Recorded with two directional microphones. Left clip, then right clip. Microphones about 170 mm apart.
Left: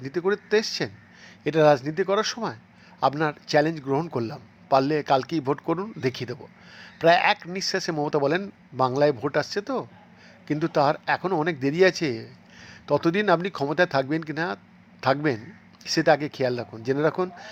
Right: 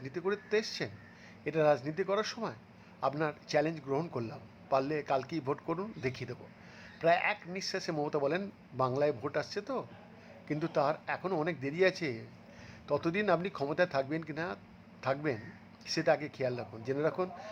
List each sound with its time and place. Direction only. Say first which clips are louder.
0.0 s speech: left 10 dB; 20° left (ahead or behind)